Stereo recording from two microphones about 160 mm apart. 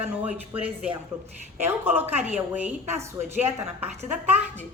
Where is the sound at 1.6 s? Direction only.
15° right (ahead or behind).